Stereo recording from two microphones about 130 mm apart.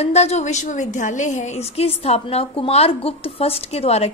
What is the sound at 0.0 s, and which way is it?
A woman's voice, 55° left (ahead or behind).